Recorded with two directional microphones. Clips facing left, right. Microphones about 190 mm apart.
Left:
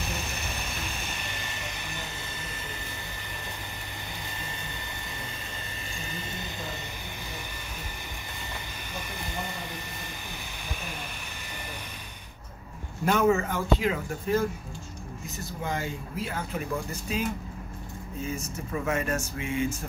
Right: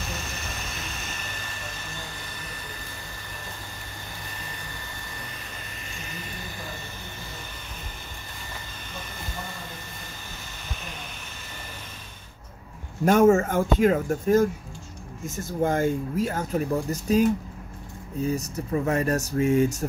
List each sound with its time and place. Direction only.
1.4 s hair dryer: 15° left (ahead or behind)
4.6 s hair dryer: 20° left (ahead or behind)
5.9 s a sound: 30° left (ahead or behind)
10.3 s hair dryer: 10° left (ahead or behind)
13.0 s speech: 45° right (ahead or behind)